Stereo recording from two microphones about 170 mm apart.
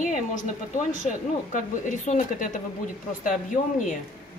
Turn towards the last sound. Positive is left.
turn(degrees=50)  # may be behind; listen again after turning